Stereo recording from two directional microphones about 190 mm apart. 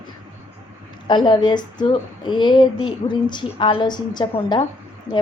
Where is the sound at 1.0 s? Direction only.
25° left (ahead or behind).